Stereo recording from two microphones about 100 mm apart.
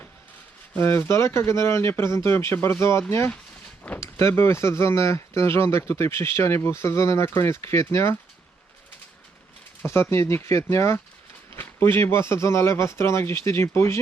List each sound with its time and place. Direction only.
0.8 s speech: 25° left (ahead or behind)
9.8 s speech: 25° left (ahead or behind)